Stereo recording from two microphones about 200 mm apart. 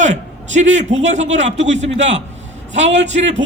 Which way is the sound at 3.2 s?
35° right (ahead or behind).